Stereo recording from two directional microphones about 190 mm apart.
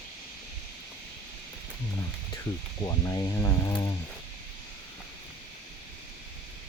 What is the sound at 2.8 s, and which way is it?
Speech, 20° left (ahead or behind).